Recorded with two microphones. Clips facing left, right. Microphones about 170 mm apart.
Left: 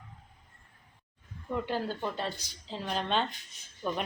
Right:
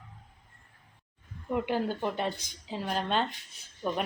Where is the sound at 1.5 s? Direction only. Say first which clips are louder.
Right 3 dB; 15° right (ahead or behind).